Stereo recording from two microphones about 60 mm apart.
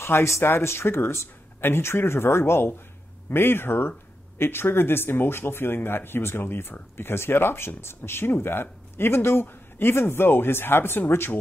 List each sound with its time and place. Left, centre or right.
0.0 s speech: left